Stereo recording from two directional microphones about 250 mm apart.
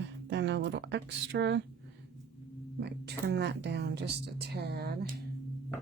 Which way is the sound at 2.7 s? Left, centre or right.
Right.